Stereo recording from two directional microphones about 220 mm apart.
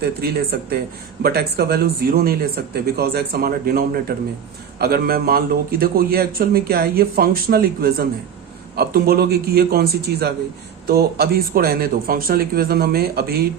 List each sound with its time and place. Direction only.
0.0 s speech: 45° right (ahead or behind)